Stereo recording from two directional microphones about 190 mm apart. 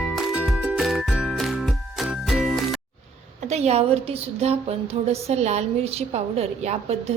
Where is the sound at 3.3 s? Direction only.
35° right (ahead or behind).